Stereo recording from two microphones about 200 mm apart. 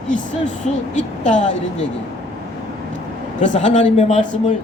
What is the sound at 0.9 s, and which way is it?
Speech, 35° left (ahead or behind).